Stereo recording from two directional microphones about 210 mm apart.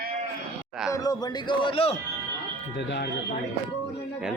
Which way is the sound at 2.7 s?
55° left (ahead or behind).